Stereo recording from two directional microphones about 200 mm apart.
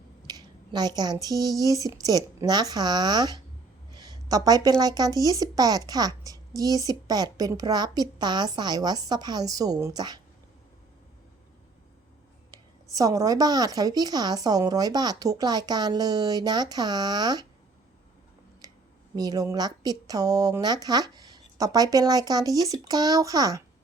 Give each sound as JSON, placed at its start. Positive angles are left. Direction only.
{"t": 0.3, "sound": "a sound", "side_deg": -20}
{"t": 1.7, "sound": "speech", "side_deg": -15}
{"t": 3.9, "sound": "a sound", "side_deg": -20}
{"t": 4.8, "sound": "speech", "side_deg": -20}
{"t": 12.5, "sound": "speech", "side_deg": -20}
{"t": 19.1, "sound": "speech", "side_deg": -20}